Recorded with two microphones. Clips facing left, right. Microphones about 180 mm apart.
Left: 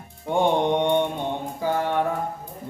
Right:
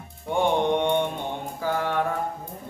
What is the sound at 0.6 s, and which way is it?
Mantra, 20° left (ahead or behind).